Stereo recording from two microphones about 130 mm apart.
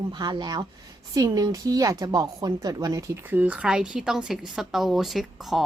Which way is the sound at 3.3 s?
10° right (ahead or behind).